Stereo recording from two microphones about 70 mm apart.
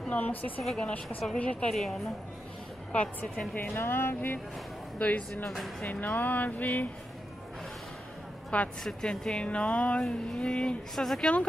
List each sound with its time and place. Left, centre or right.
0.1 s speech: left
0.6 s speech: centre
1.0 s speech: centre
1.4 s speech: centre
1.7 s speech: centre
2.9 s speech: centre
3.7 s speech: left
8.5 s speech: centre